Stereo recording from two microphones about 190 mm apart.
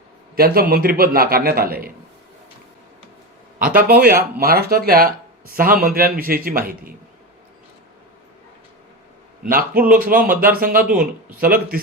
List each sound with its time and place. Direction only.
0.3 s speech: 50° right (ahead or behind)
3.8 s speech: 50° right (ahead or behind)
9.5 s speech: 50° right (ahead or behind)